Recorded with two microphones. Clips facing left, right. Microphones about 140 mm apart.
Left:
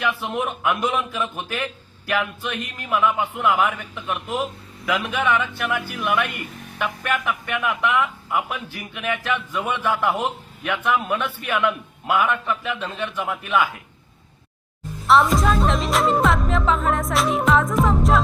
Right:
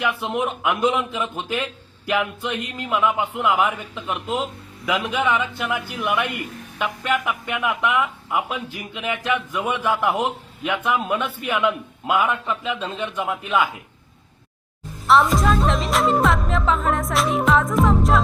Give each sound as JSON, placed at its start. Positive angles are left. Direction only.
{"t": 0.0, "sound": "a man's voice", "side_deg": -20}
{"t": 15.0, "sound": "music", "side_deg": 0}